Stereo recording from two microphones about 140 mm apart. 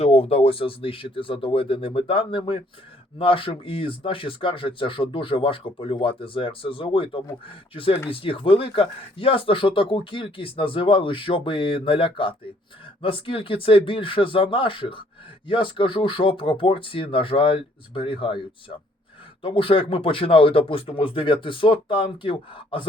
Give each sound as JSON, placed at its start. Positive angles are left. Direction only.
{"t": 0.0, "sound": "speech", "side_deg": 45}